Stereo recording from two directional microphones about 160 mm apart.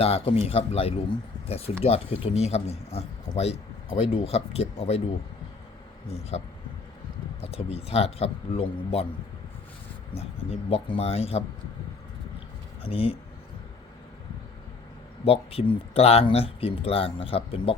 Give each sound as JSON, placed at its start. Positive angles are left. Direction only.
{"t": 0.0, "sound": "speech", "side_deg": 40}
{"t": 6.3, "sound": "speech", "side_deg": 40}
{"t": 10.2, "sound": "speech", "side_deg": 40}
{"t": 12.8, "sound": "speech", "side_deg": 35}
{"t": 15.2, "sound": "speech", "side_deg": 35}